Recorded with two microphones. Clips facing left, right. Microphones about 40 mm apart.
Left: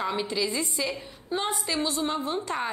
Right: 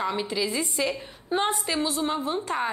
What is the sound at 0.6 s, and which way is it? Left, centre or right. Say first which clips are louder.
A woman's voice: right 3 dB; right.